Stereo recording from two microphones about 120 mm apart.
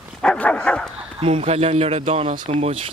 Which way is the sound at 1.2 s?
55° right (ahead or behind).